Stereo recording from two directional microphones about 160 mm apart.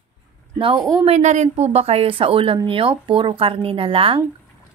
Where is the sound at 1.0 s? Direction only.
45° right (ahead or behind).